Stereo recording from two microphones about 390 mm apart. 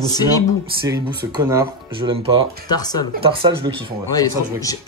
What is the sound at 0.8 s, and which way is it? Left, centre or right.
Speech, centre.